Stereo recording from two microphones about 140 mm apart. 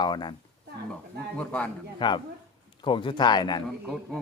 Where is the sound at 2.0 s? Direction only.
30° left (ahead or behind).